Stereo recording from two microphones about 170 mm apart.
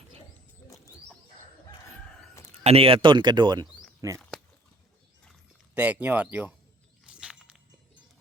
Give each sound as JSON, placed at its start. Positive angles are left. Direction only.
{"t": 2.6, "sound": "speech", "side_deg": -35}
{"t": 5.7, "sound": "speech", "side_deg": -10}
{"t": 7.0, "sound": "a sound", "side_deg": -5}